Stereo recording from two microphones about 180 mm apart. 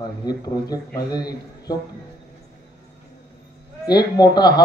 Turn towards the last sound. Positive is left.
turn(degrees=20)  # may be behind; listen again after turning